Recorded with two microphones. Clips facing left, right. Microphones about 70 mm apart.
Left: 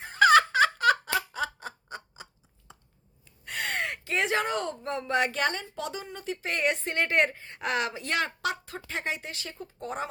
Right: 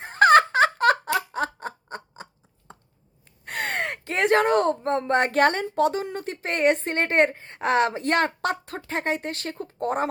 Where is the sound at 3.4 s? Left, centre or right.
Right.